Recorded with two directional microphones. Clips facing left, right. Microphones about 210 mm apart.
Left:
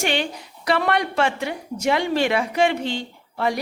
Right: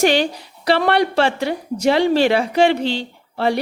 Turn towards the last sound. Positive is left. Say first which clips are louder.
# right 4 dB
turn(degrees=-30)  # may be behind; listen again after turning